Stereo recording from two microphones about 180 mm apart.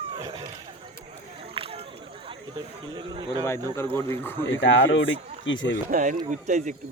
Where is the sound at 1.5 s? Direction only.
30° right (ahead or behind).